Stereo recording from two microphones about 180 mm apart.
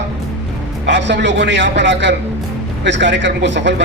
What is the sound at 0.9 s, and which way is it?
A man's voice, 80° right.